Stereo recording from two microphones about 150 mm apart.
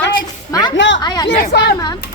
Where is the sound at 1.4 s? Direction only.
90° left.